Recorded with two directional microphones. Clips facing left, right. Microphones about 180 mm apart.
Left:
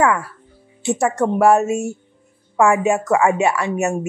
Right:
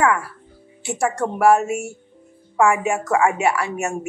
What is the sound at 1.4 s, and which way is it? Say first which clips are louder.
Speech: left 1 dB; 25° left (ahead or behind).